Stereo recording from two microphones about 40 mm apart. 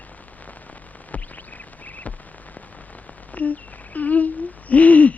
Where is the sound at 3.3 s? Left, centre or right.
Left.